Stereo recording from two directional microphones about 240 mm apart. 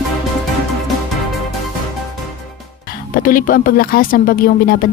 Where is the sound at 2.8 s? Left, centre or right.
Left.